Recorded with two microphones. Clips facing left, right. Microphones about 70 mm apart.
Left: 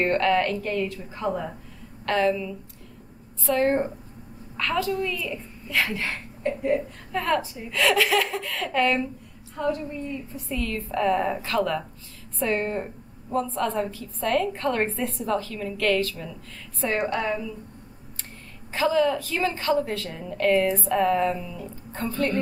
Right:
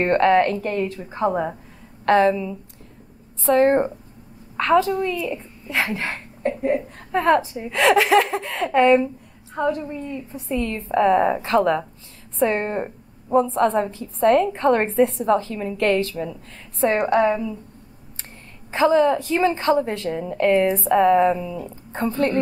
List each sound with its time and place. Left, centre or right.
0.0 s a woman's voice: right
3.4 s a woman's voice: right
13.5 s a woman's voice: right
18.7 s a woman's voice: right